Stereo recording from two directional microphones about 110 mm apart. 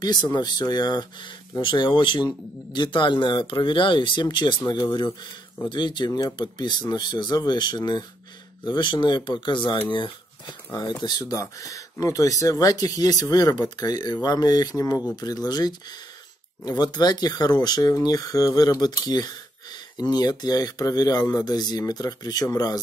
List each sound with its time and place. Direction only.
0.0 s speech: 40° left (ahead or behind)